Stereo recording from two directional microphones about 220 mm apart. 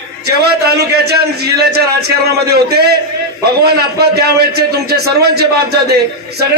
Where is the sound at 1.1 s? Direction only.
45° right (ahead or behind).